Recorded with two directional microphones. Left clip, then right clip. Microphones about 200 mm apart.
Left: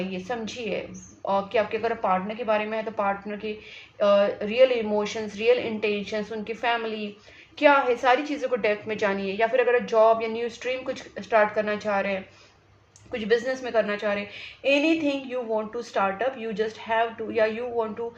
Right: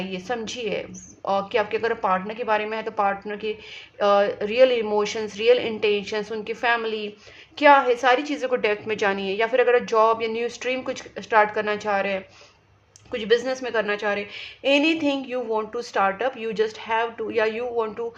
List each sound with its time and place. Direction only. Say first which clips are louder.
0.1 s a woman's voice: right 3 dB; 40° right (ahead or behind)